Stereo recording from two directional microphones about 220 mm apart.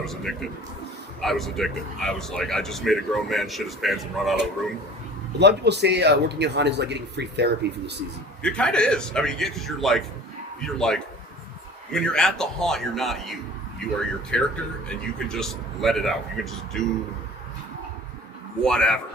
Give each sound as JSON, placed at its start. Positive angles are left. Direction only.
{"t": 0.0, "sound": "speech", "side_deg": 0}
{"t": 5.4, "sound": "a man's voice", "side_deg": -50}
{"t": 8.4, "sound": "speech", "side_deg": 5}
{"t": 18.6, "sound": "speech", "side_deg": 5}